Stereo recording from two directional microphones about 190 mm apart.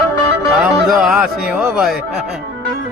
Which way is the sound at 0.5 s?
5° right (ahead or behind).